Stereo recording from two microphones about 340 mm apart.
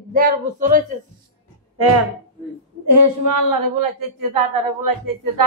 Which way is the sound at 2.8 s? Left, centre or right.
Right.